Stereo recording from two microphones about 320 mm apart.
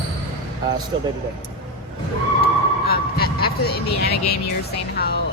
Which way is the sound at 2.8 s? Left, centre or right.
Left.